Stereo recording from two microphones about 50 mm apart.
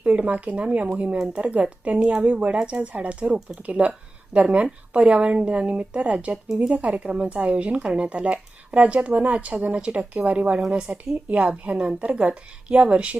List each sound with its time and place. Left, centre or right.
0.0 s speech: right